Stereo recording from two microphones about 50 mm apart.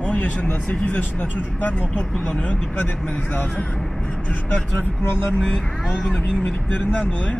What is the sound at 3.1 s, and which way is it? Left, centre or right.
Speech, left.